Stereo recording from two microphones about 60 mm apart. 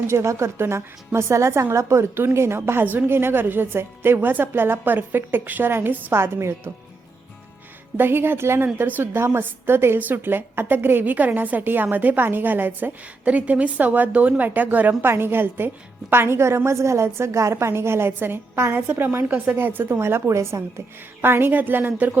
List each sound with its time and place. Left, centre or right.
0.1 s a woman's voice: right
2.1 s a woman's voice: right
7.9 s a woman's voice: right
8.6 s a woman's voice: right
9.1 s a woman's voice: right
15.0 s a woman's voice: right
21.2 s a woman's voice: right